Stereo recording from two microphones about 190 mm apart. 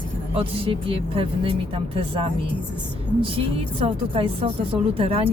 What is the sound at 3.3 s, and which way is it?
A woman's voice, 30° right (ahead or behind).